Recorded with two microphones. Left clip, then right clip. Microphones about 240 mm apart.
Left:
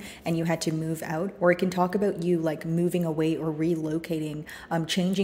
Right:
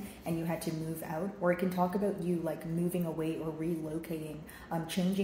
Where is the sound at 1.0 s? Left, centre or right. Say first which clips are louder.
Left 8 dB; left.